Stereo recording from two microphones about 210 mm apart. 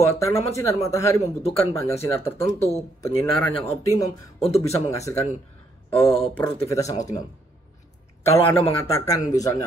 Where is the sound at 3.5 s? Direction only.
25° left (ahead or behind).